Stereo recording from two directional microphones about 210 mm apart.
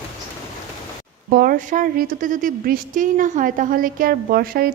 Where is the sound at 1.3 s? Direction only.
40° right (ahead or behind).